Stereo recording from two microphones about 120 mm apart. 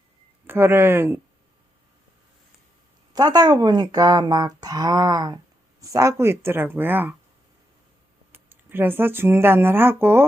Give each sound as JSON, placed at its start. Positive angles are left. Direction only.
{"t": 0.4, "sound": "speech", "side_deg": -20}
{"t": 3.1, "sound": "speech", "side_deg": -35}
{"t": 8.3, "sound": "speech", "side_deg": -15}